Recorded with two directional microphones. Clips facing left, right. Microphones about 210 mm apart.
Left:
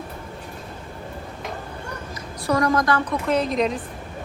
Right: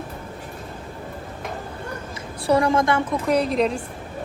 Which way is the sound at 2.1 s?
30° right (ahead or behind).